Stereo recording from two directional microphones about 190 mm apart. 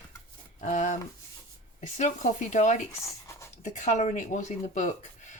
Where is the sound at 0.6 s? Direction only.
40° left (ahead or behind).